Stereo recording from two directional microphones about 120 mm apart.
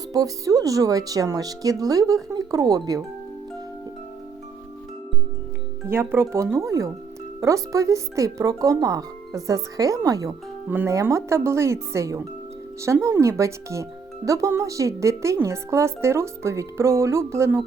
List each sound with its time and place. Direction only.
0.1 s speech: 30° right (ahead or behind)
5.9 s speech: 20° right (ahead or behind)
10.7 s speech: 15° right (ahead or behind)